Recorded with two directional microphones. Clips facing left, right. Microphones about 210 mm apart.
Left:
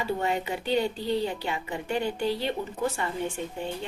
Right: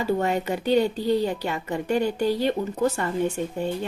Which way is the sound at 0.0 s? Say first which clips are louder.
Right 5 dB; 45° right (ahead or behind).